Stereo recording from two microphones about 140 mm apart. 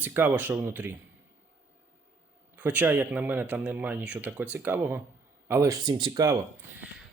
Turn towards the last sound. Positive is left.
turn(degrees=-25)  # may be behind; listen again after turning